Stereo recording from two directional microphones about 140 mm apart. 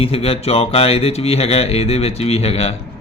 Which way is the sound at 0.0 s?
45° left (ahead or behind).